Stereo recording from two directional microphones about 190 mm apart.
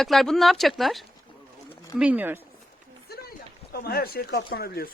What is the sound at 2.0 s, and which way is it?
Speech, 10° right (ahead or behind).